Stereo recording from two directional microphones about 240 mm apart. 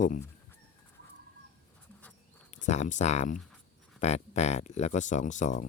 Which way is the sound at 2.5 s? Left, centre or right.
Left.